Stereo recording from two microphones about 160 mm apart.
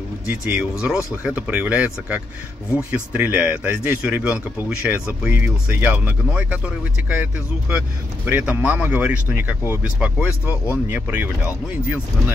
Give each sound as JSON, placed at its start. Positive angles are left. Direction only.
{"t": 0.3, "sound": "speech", "side_deg": -10}
{"t": 8.3, "sound": "speech", "side_deg": -10}